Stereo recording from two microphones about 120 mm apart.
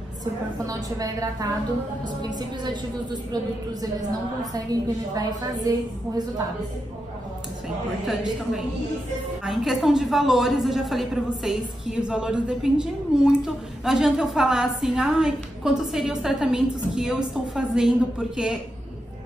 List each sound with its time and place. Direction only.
0.2 s a woman's voice: 30° right (ahead or behind)
4.6 s a woman's voice: 30° right (ahead or behind)
8.1 s a woman's voice: 5° right (ahead or behind)